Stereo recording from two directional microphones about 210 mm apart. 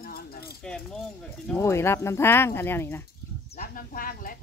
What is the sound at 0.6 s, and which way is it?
Speech, 5° left (ahead or behind).